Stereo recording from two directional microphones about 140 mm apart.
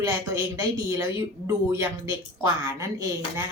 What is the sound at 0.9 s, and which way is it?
A woman's voice, 25° right (ahead or behind).